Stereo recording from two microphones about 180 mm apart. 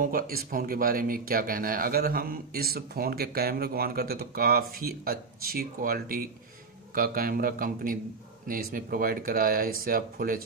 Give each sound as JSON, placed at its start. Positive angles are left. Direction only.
{"t": 0.0, "sound": "speech", "side_deg": -50}